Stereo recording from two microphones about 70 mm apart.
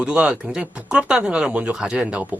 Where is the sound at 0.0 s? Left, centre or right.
Centre.